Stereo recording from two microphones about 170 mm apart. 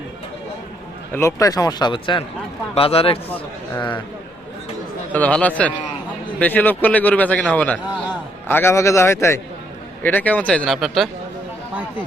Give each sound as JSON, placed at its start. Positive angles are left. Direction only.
{"t": 1.1, "sound": "speech", "side_deg": 15}
{"t": 5.1, "sound": "a man's voice", "side_deg": 10}